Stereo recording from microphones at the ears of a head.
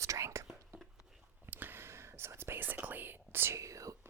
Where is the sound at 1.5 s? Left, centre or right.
Right.